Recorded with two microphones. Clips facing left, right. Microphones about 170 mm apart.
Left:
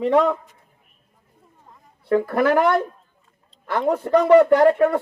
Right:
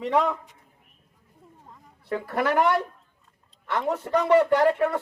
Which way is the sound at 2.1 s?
45° left (ahead or behind).